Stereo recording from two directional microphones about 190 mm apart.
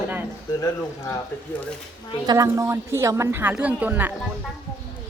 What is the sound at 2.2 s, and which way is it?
A woman's voice, 15° right (ahead or behind).